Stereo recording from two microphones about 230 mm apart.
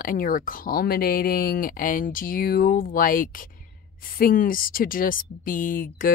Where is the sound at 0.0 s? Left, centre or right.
Left.